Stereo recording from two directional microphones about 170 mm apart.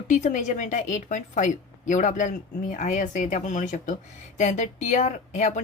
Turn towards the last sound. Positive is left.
turn(degrees=45)  # may be behind; listen again after turning